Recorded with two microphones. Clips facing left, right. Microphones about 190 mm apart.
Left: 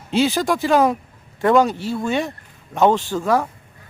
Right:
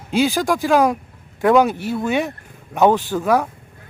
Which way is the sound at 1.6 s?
15° right (ahead or behind).